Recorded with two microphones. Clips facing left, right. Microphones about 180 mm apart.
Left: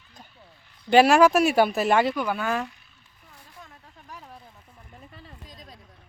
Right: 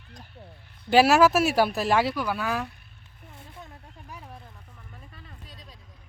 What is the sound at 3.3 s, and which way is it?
Vehicle, 25° right (ahead or behind).